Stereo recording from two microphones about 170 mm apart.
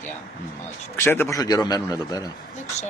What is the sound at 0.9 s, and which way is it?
Speech, 15° left (ahead or behind).